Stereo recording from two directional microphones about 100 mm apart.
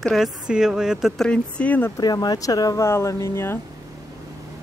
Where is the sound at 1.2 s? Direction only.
10° left (ahead or behind).